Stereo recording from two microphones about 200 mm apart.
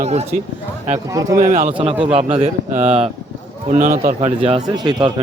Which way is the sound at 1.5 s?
40° right (ahead or behind).